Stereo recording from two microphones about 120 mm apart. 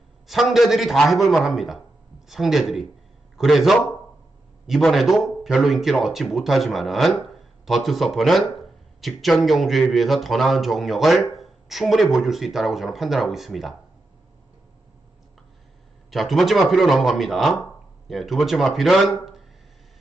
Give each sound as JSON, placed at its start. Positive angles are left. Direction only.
{"t": 0.3, "sound": "speech", "side_deg": 0}
{"t": 16.0, "sound": "speech", "side_deg": 0}